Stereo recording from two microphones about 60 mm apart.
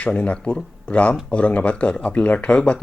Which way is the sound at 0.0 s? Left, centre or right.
Left.